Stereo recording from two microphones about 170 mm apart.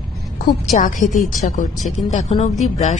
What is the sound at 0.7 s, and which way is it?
A woman's voice, 50° left (ahead or behind).